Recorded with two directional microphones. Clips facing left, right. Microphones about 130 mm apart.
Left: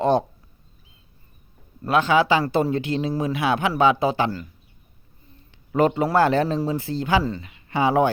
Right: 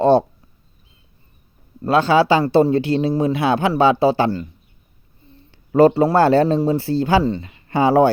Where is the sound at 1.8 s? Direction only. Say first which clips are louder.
Right 4 dB; 30° right (ahead or behind).